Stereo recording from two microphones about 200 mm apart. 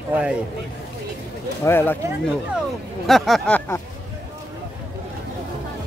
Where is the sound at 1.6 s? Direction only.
10° left (ahead or behind).